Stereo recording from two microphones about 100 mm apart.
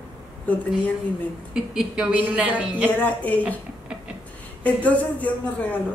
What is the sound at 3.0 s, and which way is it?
Speech, 15° left (ahead or behind).